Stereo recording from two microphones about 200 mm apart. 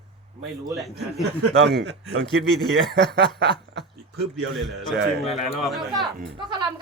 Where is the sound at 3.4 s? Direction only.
50° right (ahead or behind).